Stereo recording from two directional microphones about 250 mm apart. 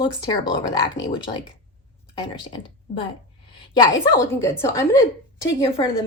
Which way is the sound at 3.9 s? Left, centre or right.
Centre.